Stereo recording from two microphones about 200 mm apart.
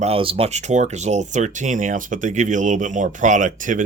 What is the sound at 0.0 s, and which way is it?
Speech, 30° right (ahead or behind).